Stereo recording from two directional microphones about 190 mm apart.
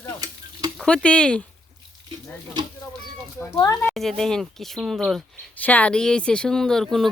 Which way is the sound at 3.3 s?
15° left (ahead or behind).